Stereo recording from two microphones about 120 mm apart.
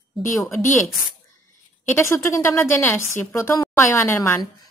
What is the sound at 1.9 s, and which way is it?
A woman's voice, 25° left (ahead or behind).